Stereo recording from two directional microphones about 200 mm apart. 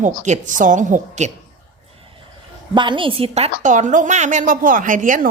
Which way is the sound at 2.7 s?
25° right (ahead or behind).